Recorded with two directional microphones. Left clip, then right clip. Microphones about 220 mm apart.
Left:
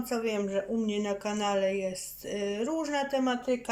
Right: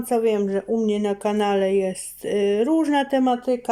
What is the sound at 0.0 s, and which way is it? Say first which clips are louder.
A woman's voice: right 10 dB; 30° right (ahead or behind).